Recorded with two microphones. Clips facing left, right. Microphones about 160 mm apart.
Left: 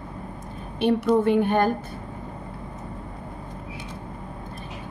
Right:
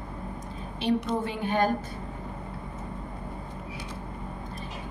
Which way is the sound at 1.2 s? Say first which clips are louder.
Left 7 dB; 55° left (ahead or behind).